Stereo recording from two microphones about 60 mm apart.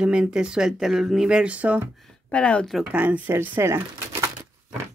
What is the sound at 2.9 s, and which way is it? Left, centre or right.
Speech, right.